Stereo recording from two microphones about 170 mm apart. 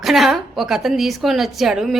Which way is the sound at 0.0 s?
Centre (ahead or behind).